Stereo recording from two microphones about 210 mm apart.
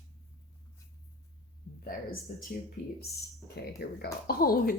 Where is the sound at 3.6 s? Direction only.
50° left (ahead or behind).